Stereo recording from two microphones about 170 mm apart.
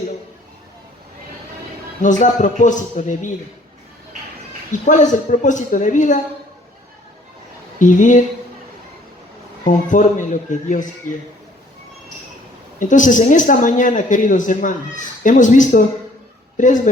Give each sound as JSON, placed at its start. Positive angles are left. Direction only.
{"t": 2.0, "sound": "a man's voice", "side_deg": 45}
{"t": 4.9, "sound": "a man's voice", "side_deg": 45}
{"t": 7.8, "sound": "a man's voice", "side_deg": 50}
{"t": 9.6, "sound": "a man's voice", "side_deg": 50}
{"t": 12.8, "sound": "a man's voice", "side_deg": 50}